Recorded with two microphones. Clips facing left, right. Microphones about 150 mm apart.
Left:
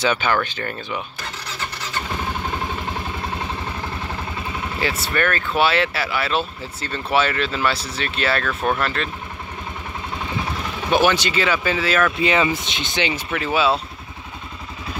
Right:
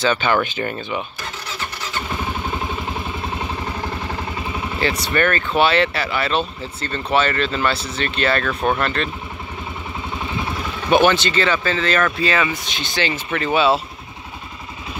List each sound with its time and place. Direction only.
0.0 s speech: 10° left (ahead or behind)
0.3 s speech: 15° right (ahead or behind)
5.0 s speech: centre (ahead or behind)
10.9 s speech: 10° left (ahead or behind)
12.2 s speech: 20° left (ahead or behind)
13.3 s speech: 5° left (ahead or behind)